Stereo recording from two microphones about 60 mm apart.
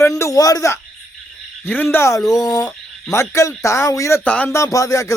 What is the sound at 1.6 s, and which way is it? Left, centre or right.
Speech, left.